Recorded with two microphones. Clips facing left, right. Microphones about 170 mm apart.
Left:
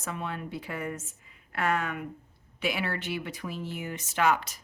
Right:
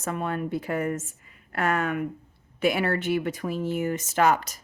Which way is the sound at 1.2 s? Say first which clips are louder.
Right 1 dB; 50° right (ahead or behind).